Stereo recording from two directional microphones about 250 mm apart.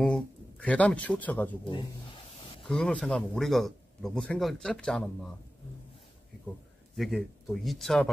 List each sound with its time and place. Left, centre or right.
0.0 s speech: centre
2.7 s speech: centre
7.0 s speech: centre